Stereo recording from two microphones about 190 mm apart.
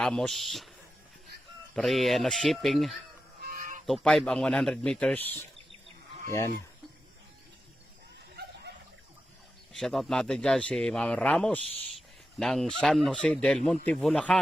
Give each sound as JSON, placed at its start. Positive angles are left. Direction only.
{"t": 0.0, "sound": "speech", "side_deg": 5}
{"t": 1.7, "sound": "speech", "side_deg": 0}
{"t": 3.4, "sound": "a sound", "side_deg": -45}
{"t": 3.8, "sound": "speech", "side_deg": 0}
{"t": 8.4, "sound": "wild animals", "side_deg": -60}
{"t": 9.7, "sound": "speech", "side_deg": 0}